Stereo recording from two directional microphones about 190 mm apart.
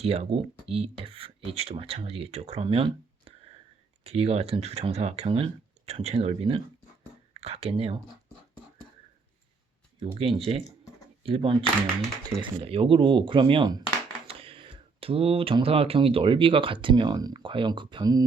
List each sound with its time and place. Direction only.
0.0 s speech: 30° right (ahead or behind)
10.0 s speech: 30° right (ahead or behind)